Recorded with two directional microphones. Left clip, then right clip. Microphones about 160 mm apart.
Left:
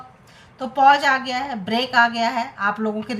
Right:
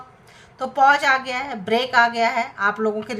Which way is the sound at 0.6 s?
15° right (ahead or behind).